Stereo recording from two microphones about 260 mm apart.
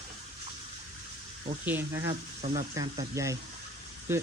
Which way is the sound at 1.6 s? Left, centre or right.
Centre.